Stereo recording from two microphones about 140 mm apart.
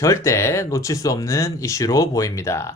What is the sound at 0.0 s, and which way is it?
Speech, 20° left (ahead or behind).